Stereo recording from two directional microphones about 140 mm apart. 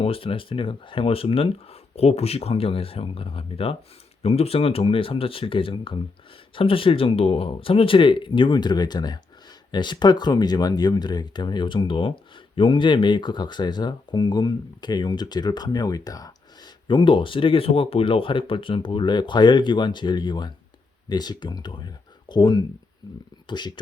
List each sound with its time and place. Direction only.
0.0 s speech: 40° left (ahead or behind)